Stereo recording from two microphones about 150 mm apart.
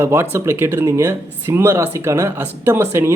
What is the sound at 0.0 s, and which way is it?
A man's voice, 15° right (ahead or behind).